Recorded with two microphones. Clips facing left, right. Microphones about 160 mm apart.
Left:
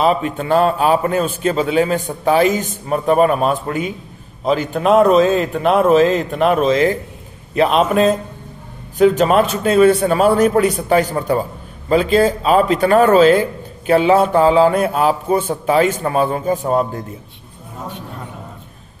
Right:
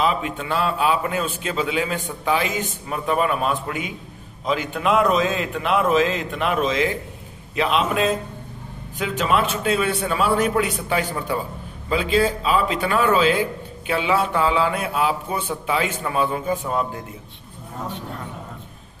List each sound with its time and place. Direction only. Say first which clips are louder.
0.0 s a man's voice: left 6 dB; 45° left (ahead or behind)